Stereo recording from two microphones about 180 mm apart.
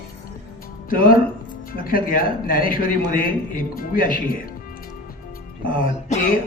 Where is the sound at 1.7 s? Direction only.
50° left (ahead or behind).